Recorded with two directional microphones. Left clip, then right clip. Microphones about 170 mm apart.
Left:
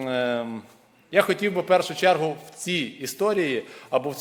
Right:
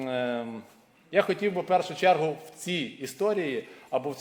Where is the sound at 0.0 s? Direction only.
30° left (ahead or behind).